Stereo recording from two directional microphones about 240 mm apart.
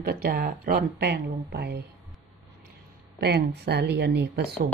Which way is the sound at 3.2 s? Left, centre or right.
Right.